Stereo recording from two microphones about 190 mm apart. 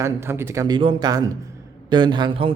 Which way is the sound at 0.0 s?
15° right (ahead or behind).